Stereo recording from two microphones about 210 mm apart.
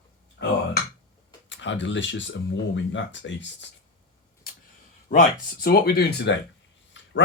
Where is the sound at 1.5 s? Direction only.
60° left (ahead or behind).